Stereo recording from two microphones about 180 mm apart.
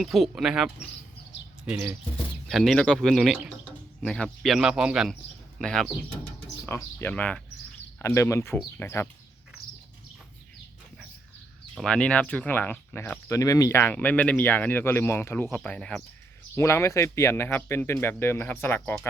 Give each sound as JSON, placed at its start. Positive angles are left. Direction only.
{"t": 0.0, "sound": "speech", "side_deg": 0}
{"t": 2.1, "sound": "speech", "side_deg": 0}
{"t": 6.7, "sound": "speech", "side_deg": 15}
{"t": 11.7, "sound": "speech", "side_deg": 5}
{"t": 16.6, "sound": "speech", "side_deg": 15}